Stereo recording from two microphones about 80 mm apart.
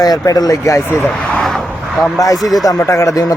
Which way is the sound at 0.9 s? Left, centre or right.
Left.